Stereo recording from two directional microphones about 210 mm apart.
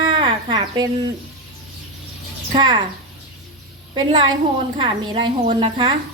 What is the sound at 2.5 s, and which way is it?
Speech, 20° right (ahead or behind).